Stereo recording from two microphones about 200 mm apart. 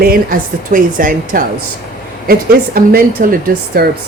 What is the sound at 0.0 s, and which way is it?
A woman's voice, 45° right (ahead or behind).